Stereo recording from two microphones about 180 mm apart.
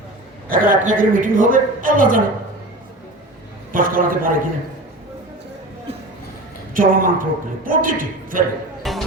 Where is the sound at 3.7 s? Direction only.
50° right (ahead or behind).